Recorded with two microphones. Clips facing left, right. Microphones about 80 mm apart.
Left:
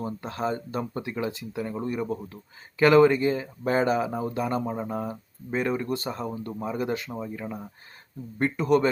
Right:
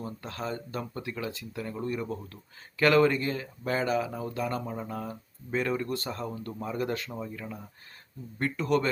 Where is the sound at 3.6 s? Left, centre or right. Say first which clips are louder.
Left 4 dB; left.